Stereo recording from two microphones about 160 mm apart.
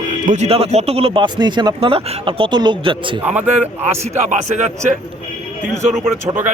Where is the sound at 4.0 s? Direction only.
45° right (ahead or behind).